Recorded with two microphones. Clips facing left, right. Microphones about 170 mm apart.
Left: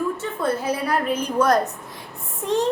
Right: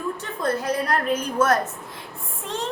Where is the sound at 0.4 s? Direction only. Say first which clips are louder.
Even; 10° left (ahead or behind).